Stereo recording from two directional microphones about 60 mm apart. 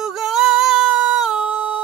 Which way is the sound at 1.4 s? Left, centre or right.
Right.